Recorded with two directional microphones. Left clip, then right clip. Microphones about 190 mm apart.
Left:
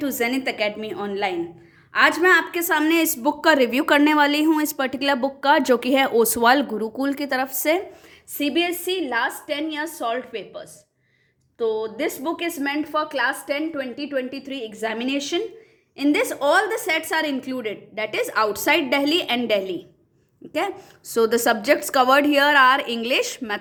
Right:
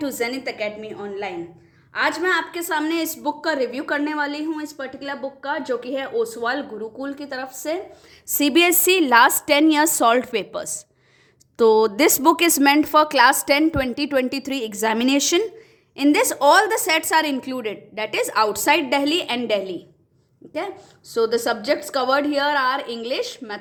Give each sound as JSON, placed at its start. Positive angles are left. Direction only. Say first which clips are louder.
{"t": 0.0, "sound": "a woman's voice", "louder": "left 2 dB", "side_deg": 5}
{"t": 8.4, "sound": "a woman's voice", "louder": "right 5 dB", "side_deg": -35}
{"t": 16.0, "sound": "a woman's voice", "louder": "right 3 dB", "side_deg": -20}
{"t": 21.1, "sound": "a woman's voice", "louder": "left 1 dB", "side_deg": 10}